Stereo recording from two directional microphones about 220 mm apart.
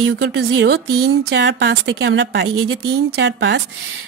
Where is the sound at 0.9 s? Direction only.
65° right (ahead or behind).